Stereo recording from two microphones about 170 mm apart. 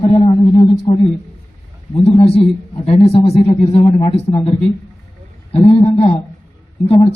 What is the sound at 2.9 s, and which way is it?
Speech, 35° left (ahead or behind).